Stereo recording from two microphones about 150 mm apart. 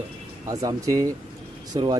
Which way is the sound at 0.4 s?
25° right (ahead or behind).